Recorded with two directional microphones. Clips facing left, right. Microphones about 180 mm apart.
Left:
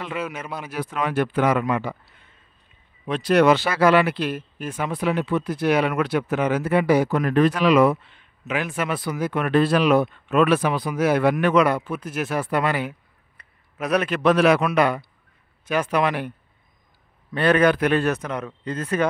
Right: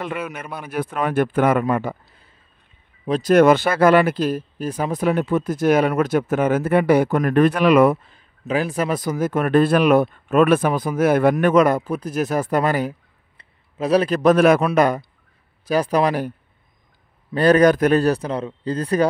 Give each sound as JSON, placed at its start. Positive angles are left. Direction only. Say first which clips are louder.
{"t": 0.0, "sound": "speech", "louder": "right 2 dB", "side_deg": -55}
{"t": 13.4, "sound": "a man's voice", "louder": "right 5 dB", "side_deg": -30}